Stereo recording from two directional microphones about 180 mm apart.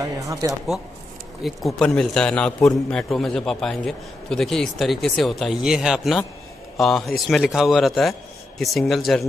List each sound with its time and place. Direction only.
0.0 s speech: 20° right (ahead or behind)
1.4 s a man's voice: centre (ahead or behind)